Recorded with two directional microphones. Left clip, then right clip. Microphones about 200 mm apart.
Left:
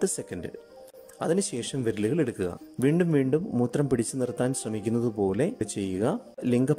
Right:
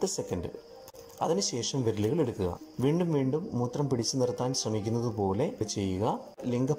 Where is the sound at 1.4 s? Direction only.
65° left (ahead or behind).